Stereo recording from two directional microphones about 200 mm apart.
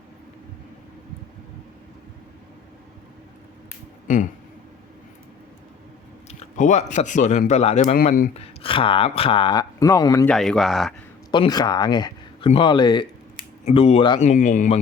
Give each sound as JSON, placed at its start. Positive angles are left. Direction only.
{"t": 4.1, "sound": "speech", "side_deg": 40}
{"t": 6.2, "sound": "speech", "side_deg": 35}
{"t": 8.3, "sound": "speech", "side_deg": 30}
{"t": 10.2, "sound": "speech", "side_deg": 5}
{"t": 11.3, "sound": "speech", "side_deg": 20}